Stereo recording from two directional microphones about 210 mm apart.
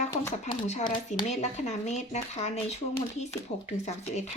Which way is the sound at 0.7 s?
35° left (ahead or behind).